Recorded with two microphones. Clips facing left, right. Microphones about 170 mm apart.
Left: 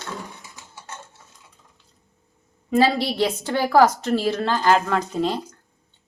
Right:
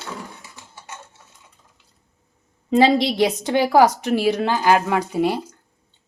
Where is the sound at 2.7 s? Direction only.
20° right (ahead or behind).